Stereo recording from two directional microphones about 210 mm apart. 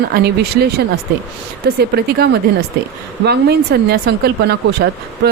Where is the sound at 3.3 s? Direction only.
50° right (ahead or behind).